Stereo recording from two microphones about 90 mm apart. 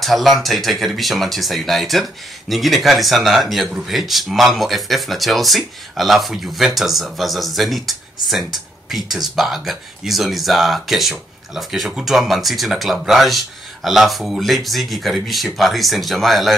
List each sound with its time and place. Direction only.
0.0 s speech: centre (ahead or behind)